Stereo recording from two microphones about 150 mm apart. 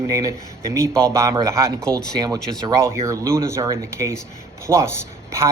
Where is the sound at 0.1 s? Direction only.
20° right (ahead or behind).